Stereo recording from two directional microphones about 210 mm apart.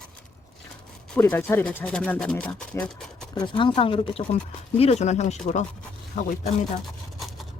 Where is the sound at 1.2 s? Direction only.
10° left (ahead or behind).